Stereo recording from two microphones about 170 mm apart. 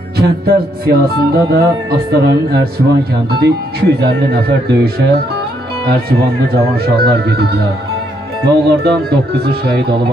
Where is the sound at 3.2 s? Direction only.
70° right (ahead or behind).